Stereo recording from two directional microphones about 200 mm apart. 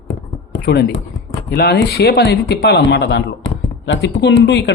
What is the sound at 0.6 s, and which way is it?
Speech, 50° left (ahead or behind).